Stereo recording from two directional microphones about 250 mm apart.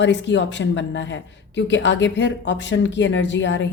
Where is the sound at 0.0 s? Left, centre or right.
Left.